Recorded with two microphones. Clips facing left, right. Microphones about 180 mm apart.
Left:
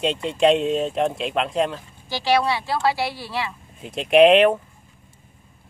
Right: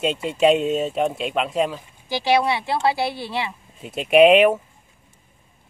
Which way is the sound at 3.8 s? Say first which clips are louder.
Even; 5° right (ahead or behind).